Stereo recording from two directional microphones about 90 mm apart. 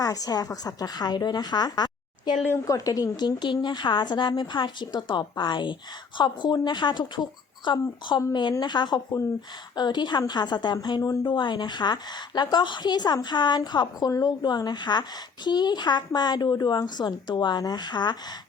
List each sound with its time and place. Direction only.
0.0 s a woman's voice: 40° left (ahead or behind)
2.6 s a woman's voice: 40° left (ahead or behind); by 13.6 s 60° left (ahead or behind)
13.6 s a woman's voice: 45° left (ahead or behind)